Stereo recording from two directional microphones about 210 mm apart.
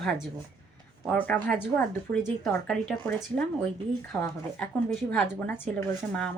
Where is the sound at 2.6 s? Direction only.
5° left (ahead or behind).